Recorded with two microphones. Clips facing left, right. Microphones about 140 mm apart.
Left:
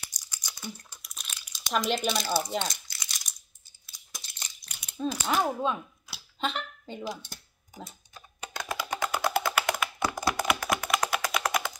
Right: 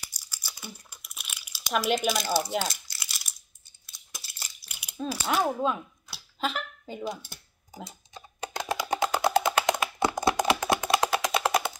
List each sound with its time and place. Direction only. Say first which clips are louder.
0.1 s crumpling: even; 5° right (ahead or behind)
2.0 s speech: right 2 dB; centre (ahead or behind)
2.5 s crumpling: right 2 dB; 5° right (ahead or behind)
8.1 s computer keyboard: right 5 dB; 25° right (ahead or behind)
10.0 s a sound: right 4 dB; 20° right (ahead or behind)
10.4 s typing: right 3 dB; 30° right (ahead or behind)
11.0 s a sound: right 3 dB; 20° right (ahead or behind)